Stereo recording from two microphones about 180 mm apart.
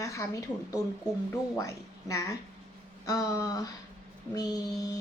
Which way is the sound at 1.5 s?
15° left (ahead or behind).